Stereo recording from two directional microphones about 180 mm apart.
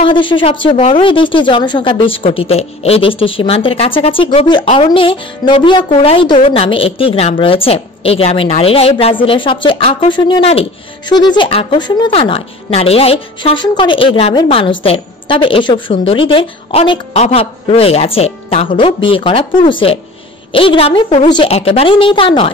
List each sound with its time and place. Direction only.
0.0 s a woman's voice: 30° left (ahead or behind)